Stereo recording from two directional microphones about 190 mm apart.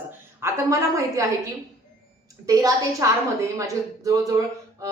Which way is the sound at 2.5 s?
15° right (ahead or behind).